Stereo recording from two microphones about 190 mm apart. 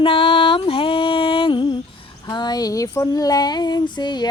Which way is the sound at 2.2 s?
20° left (ahead or behind).